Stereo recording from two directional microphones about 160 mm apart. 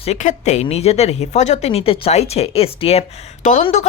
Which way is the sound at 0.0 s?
45° left (ahead or behind).